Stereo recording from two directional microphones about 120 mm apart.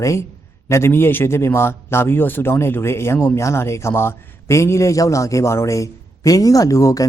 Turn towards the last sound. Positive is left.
turn(degrees=25)  # may be behind; listen again after turning